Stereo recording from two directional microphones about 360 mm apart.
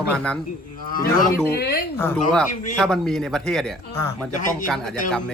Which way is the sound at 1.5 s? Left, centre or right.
Left.